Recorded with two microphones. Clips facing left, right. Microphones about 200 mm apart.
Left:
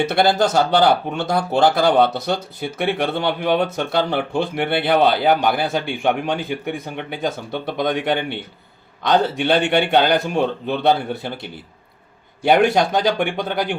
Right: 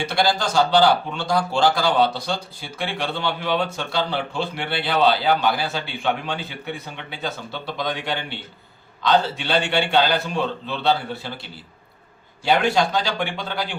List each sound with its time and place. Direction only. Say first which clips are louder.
0.1 s speech: left 5 dB; 60° left (ahead or behind)